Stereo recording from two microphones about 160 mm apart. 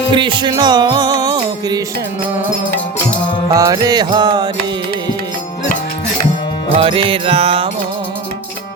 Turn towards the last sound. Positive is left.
turn(degrees=-35)  # may be behind; listen again after turning